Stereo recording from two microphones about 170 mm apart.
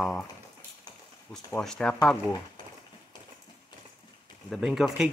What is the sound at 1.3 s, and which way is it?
Speech, 5° left (ahead or behind).